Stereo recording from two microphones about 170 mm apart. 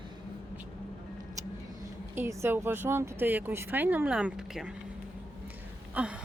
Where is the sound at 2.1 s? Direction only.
15° right (ahead or behind).